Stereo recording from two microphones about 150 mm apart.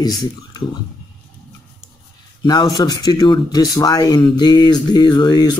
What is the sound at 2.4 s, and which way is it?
Speech, 25° left (ahead or behind).